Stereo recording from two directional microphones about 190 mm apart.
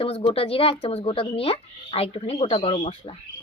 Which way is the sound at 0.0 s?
30° left (ahead or behind).